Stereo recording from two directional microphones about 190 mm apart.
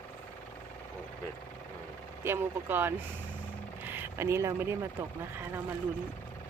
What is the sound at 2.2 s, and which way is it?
Speech, 10° right (ahead or behind).